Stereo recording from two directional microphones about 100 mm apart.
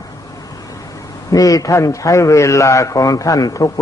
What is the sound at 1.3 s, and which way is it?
A man's voice, 35° left (ahead or behind).